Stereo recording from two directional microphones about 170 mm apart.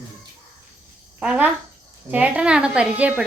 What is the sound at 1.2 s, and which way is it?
A woman's voice, 5° right (ahead or behind).